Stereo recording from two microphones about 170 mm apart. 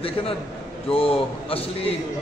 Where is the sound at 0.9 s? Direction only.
35° left (ahead or behind).